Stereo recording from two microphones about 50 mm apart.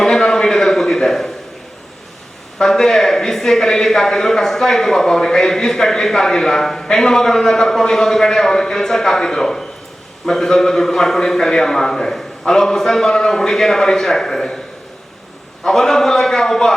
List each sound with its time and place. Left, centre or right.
0.0 s a sound: centre
2.6 s a man's voice: centre
15.6 s a man's voice: centre